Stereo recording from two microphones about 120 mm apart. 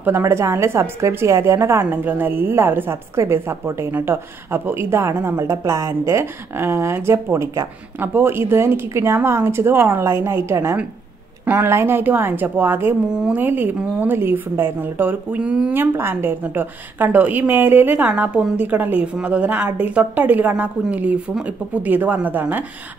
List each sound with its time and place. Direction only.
0.0 s a woman's voice: 20° right (ahead or behind)
15.7 s a woman's voice: 15° right (ahead or behind)